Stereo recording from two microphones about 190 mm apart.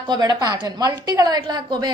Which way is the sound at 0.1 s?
20° right (ahead or behind).